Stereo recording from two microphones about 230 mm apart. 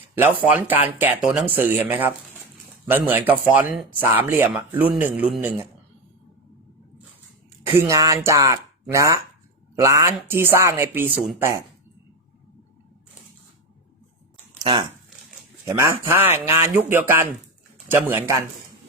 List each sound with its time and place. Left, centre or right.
0.2 s speech: centre
7.7 s speech: centre
14.6 s speech: right